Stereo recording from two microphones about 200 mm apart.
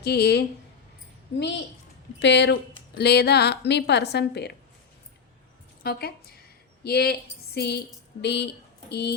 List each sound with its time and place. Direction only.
0.0 s a woman's voice: 55° left (ahead or behind)
2.1 s a woman's voice: 60° left (ahead or behind)
5.8 s a woman's voice: 50° left (ahead or behind)